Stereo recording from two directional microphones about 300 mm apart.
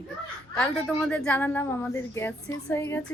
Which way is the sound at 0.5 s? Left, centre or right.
Centre.